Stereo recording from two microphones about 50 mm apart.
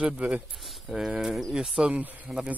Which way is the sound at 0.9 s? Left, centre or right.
Centre.